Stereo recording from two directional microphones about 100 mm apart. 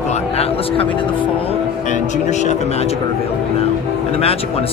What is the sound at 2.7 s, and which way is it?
Speech, 90° left.